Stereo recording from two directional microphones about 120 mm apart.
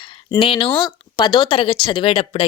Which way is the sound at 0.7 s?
40° left (ahead or behind).